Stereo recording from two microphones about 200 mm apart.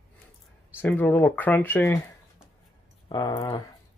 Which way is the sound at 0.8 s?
10° left (ahead or behind).